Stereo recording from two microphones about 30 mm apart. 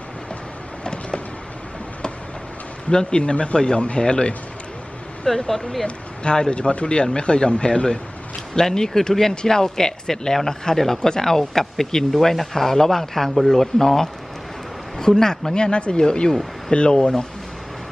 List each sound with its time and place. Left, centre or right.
2.9 s speech: left
5.2 s speech: centre
5.9 s speech: left; by 9.3 s centre
9.3 s speech: left
15.5 s speech: left